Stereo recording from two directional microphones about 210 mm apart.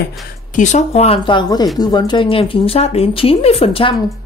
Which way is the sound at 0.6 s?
35° left (ahead or behind).